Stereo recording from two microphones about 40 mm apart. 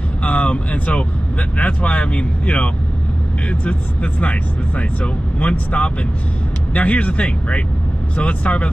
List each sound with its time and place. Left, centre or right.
0.2 s vehicle: left
1.6 s speech: left